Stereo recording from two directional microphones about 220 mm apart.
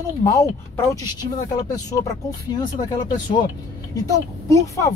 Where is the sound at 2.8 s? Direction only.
35° left (ahead or behind).